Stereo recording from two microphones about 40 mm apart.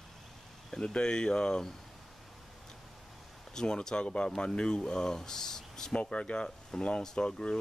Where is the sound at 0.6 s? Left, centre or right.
Centre.